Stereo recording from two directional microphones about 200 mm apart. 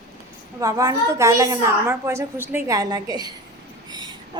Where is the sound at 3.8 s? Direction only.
20° right (ahead or behind).